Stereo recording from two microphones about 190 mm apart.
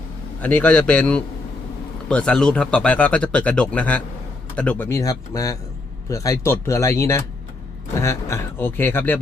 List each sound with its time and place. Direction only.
0.4 s speech: 5° left (ahead or behind)